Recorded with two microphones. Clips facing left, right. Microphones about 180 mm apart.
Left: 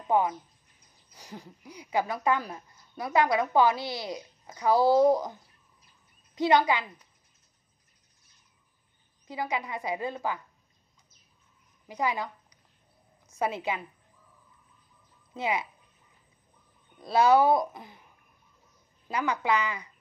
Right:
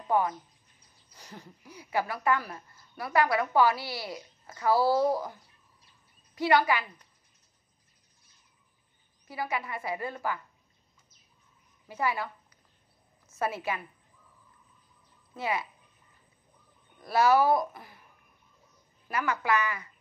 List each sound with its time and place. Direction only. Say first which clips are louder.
0.1 s a woman's voice: left 2 dB; 20° left (ahead or behind)
9.3 s a woman's voice: left 2 dB; 15° left (ahead or behind)
11.9 s a woman's voice: left 1 dB; 15° left (ahead or behind)
15.3 s speech: left 2 dB; 20° left (ahead or behind)
17.0 s speech: left 2 dB; 20° left (ahead or behind)
19.0 s a woman's voice: left 1 dB; 15° left (ahead or behind)